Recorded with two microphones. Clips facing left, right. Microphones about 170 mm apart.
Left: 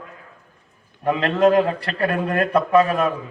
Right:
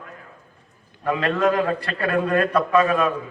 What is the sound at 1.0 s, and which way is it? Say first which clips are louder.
A man's voice: left 3 dB; 20° left (ahead or behind).